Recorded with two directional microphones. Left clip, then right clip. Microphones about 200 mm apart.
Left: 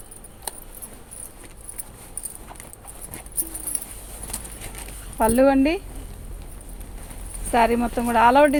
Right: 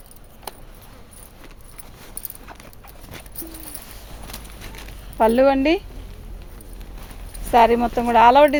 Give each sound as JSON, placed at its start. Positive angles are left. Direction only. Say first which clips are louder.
{"t": 5.1, "sound": "speech", "louder": "right 2 dB", "side_deg": -50}
{"t": 7.5, "sound": "speech", "louder": "right 5 dB", "side_deg": -50}